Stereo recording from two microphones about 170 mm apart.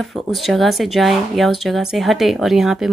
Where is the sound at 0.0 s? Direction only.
Centre (ahead or behind).